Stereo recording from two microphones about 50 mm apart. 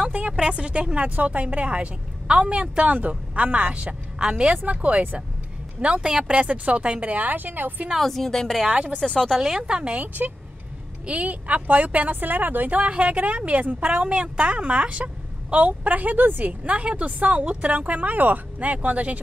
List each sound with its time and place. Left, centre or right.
0.5 s a woman's voice: right
4.6 s speech: right
7.9 s speech: centre
8.6 s speech: right
9.0 s speech: centre
9.4 s speech: centre
9.9 s speech: right